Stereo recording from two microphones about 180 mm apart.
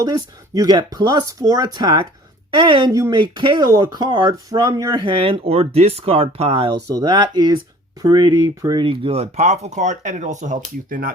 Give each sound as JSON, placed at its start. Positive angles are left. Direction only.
{"t": 0.0, "sound": "speech", "side_deg": -20}